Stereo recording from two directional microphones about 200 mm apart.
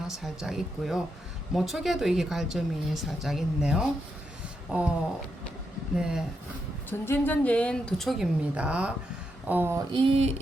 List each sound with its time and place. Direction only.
0.2 s speech: centre (ahead or behind)
6.0 s speech: 5° right (ahead or behind)
7.0 s speech: 10° left (ahead or behind); by 9.0 s 5° right (ahead or behind)
9.5 s a sound: 10° right (ahead or behind)
9.9 s mantra: 25° right (ahead or behind)